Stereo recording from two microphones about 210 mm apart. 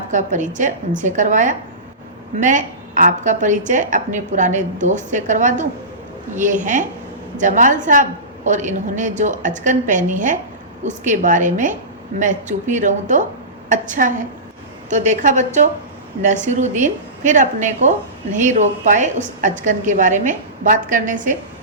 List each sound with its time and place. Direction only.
0.1 s a woman's voice: 35° right (ahead or behind)